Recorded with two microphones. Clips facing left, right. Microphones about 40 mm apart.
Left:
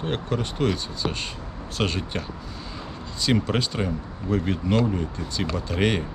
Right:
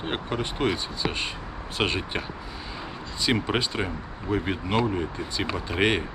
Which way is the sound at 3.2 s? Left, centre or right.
Centre.